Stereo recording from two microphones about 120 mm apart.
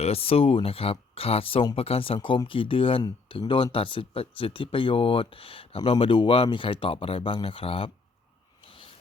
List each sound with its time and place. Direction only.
0.0 s speech: 55° left (ahead or behind)